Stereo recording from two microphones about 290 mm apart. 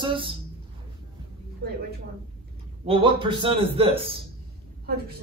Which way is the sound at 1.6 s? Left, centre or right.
Right.